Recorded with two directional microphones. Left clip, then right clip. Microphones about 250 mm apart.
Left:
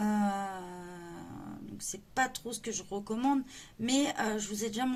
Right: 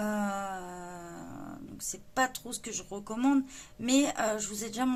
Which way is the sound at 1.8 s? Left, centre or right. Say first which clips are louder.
Right 2 dB; centre.